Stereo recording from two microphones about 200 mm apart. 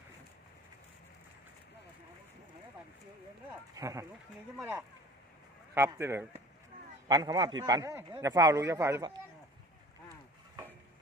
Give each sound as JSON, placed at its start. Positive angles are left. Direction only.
{"t": 3.8, "sound": "a man's voice", "side_deg": -15}